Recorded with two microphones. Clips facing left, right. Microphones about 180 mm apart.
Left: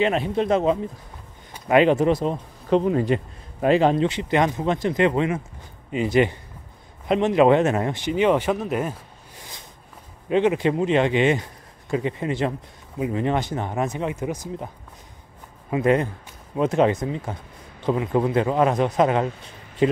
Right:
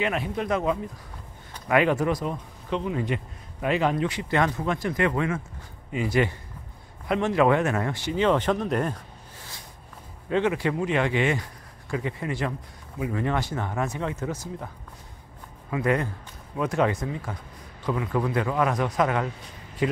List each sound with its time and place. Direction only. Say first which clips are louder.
0.0 s speech: left 6 dB; 25° left (ahead or behind)
2.7 s a man's voice: left 8 dB; 40° left (ahead or behind)
3.6 s speech: left 6 dB; 30° left (ahead or behind); by 8.9 s 5° left (ahead or behind)
9.4 s a sound: left 3 dB; 20° left (ahead or behind)
10.3 s speech: left 5 dB; 20° left (ahead or behind)
15.7 s speech: left 5 dB; 25° left (ahead or behind)